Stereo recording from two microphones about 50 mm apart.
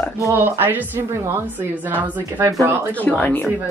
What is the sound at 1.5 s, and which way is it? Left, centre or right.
Speech, right.